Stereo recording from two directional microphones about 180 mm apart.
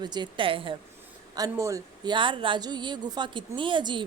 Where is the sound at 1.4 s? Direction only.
15° right (ahead or behind).